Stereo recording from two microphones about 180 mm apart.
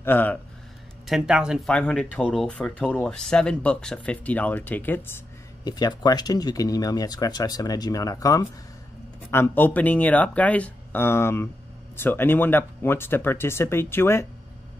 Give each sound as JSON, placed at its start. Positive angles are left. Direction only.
{"t": 0.0, "sound": "speech", "side_deg": 10}
{"t": 1.0, "sound": "speech", "side_deg": -5}